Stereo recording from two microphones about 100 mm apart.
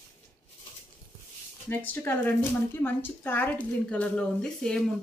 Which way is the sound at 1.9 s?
20° left (ahead or behind).